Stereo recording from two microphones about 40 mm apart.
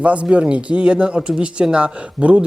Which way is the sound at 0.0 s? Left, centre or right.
Right.